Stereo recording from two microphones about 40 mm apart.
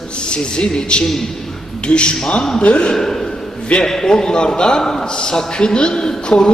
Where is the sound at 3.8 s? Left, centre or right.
Centre.